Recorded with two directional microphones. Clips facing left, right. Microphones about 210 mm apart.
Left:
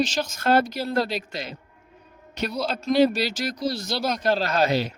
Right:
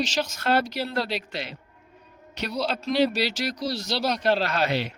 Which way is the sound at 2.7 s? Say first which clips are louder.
Left 5 dB; 45° left (ahead or behind).